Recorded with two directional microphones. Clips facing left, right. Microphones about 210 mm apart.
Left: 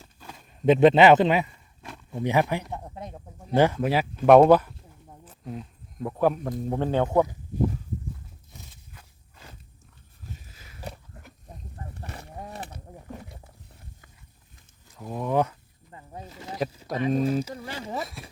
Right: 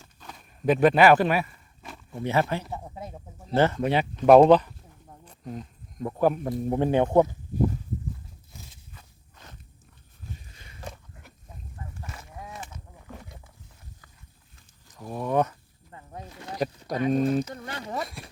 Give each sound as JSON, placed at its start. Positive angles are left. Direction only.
{"t": 0.0, "sound": "a sound", "side_deg": 10}
{"t": 0.6, "sound": "a man's voice", "side_deg": 25}
{"t": 2.6, "sound": "speech", "side_deg": 0}
{"t": 3.4, "sound": "speech", "side_deg": 15}
{"t": 8.5, "sound": "walk", "side_deg": 5}
{"t": 10.4, "sound": "biting", "side_deg": 5}
{"t": 11.4, "sound": "a sound", "side_deg": 35}
{"t": 15.3, "sound": "speech", "side_deg": 10}